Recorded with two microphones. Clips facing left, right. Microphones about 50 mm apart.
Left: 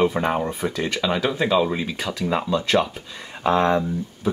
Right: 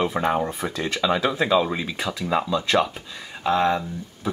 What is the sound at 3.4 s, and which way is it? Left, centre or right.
Speech, left.